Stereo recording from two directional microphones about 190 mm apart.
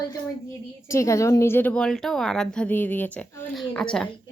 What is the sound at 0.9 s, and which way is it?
A woman's voice, 15° left (ahead or behind).